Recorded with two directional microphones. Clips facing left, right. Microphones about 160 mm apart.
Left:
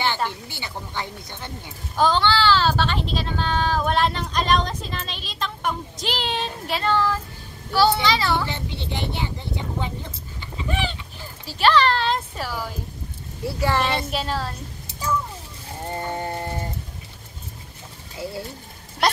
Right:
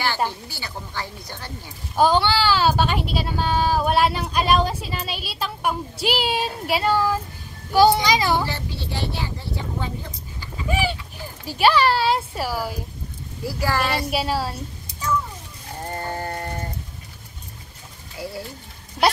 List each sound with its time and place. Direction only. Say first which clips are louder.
0.5 s speech: left 1 dB; 20° left (ahead or behind)
2.0 s speech: right 1 dB; 10° right (ahead or behind)
8.5 s speech: even; 20° left (ahead or behind)
10.7 s speech: right 4 dB; 10° right (ahead or behind)
13.5 s speech: left 1 dB; 25° left (ahead or behind)
14.1 s speech: right 3 dB; 10° right (ahead or behind)
15.9 s a sound: left 1 dB; 20° left (ahead or behind)
18.2 s speech: left 1 dB; 25° left (ahead or behind)